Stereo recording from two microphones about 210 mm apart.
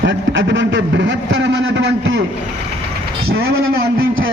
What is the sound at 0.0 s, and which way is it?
A man's voice, 55° right (ahead or behind).